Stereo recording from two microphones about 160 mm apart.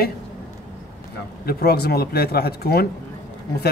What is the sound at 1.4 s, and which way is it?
Speech, 75° left (ahead or behind).